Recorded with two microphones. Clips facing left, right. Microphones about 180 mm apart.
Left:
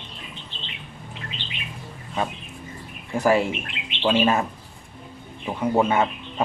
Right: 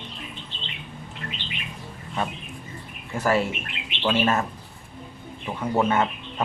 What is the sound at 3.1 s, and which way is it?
A man's voice, 15° left (ahead or behind).